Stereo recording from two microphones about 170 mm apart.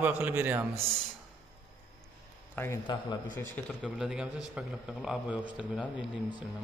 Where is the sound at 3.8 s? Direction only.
5° right (ahead or behind).